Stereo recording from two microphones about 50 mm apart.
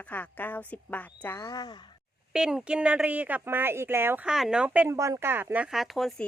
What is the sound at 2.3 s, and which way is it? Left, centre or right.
Speech, centre.